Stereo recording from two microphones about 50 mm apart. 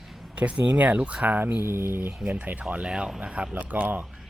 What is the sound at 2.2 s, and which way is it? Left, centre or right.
Speech, right.